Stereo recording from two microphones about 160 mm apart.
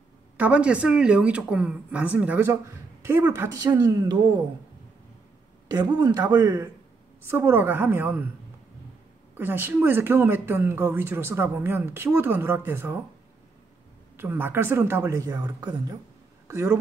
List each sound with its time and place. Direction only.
0.4 s speech: 10° right (ahead or behind); by 4.4 s 25° right (ahead or behind)
5.7 s speech: 25° right (ahead or behind)
9.4 s speech: 10° right (ahead or behind)
14.1 s a woman's voice: 15° right (ahead or behind)